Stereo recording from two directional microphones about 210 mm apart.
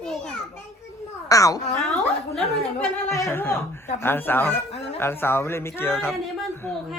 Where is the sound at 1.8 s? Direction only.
Centre (ahead or behind).